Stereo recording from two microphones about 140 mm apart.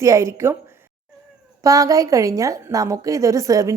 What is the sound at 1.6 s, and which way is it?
A woman's voice, 25° right (ahead or behind).